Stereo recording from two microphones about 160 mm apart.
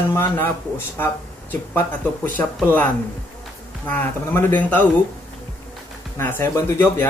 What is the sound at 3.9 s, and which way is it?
Speech, 10° left (ahead or behind).